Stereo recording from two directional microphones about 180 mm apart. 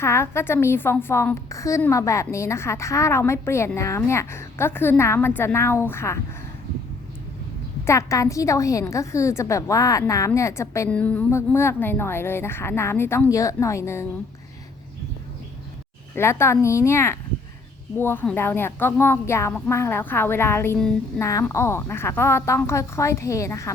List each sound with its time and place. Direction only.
0.0 s a woman's voice: 15° left (ahead or behind)
7.9 s a woman's voice: 15° left (ahead or behind)
16.1 s a woman's voice: 15° left (ahead or behind)